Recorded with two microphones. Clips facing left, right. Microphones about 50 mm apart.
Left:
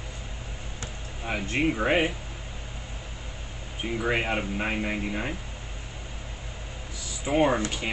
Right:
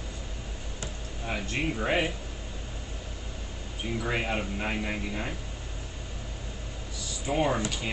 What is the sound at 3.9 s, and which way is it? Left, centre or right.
Speech, left.